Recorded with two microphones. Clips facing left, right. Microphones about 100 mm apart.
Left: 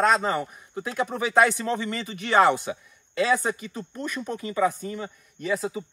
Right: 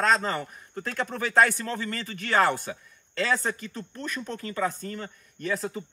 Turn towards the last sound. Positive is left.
turn(degrees=5)  # may be behind; listen again after turning